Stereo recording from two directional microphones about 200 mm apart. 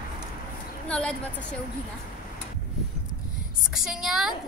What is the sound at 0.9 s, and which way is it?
Speech, 5° left (ahead or behind).